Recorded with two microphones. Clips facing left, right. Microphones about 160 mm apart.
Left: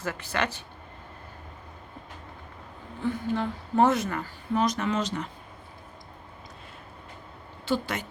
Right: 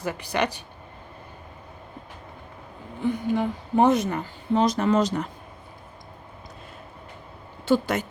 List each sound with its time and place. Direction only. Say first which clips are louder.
0.0 s a woman's voice: right 4 dB; 15° right (ahead or behind)
3.0 s a woman's voice: right 4 dB; 15° right (ahead or behind)
4.6 s speech: right 6 dB; 30° right (ahead or behind)
7.6 s speech: right 6 dB; 45° right (ahead or behind)